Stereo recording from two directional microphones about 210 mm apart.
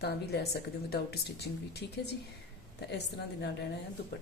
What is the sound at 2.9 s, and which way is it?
Speech, 55° left (ahead or behind).